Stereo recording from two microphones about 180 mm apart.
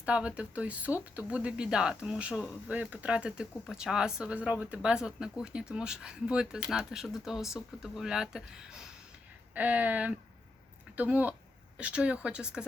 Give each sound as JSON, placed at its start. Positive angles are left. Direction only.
{"t": 0.0, "sound": "speech", "side_deg": -5}